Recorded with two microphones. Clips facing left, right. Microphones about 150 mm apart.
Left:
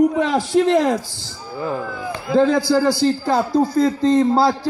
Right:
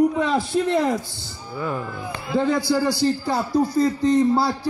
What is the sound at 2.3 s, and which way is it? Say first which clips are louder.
Speech: left 5 dB; 90° left.